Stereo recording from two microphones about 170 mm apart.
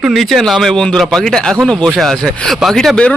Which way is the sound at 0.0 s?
Centre (ahead or behind).